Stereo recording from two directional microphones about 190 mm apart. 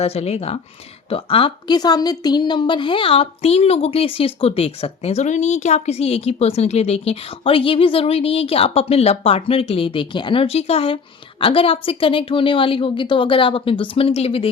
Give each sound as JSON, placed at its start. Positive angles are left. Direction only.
{"t": 0.0, "sound": "a woman's voice", "side_deg": 35}